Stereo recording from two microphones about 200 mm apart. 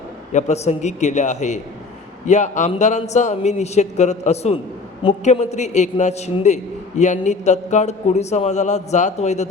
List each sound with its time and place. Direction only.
0.3 s a man's voice: 35° left (ahead or behind)